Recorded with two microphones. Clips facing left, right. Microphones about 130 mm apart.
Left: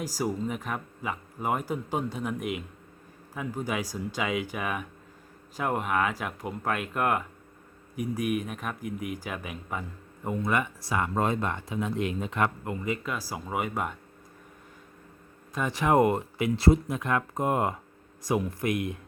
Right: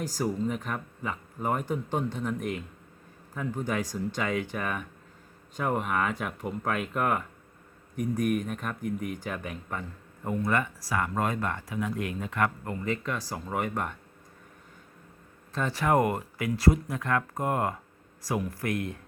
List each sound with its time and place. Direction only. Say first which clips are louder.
0.0 s speech: right 1 dB; 10° left (ahead or behind)
10.2 s speech: even; 20° left (ahead or behind)
15.5 s speech: left 2 dB; 15° left (ahead or behind)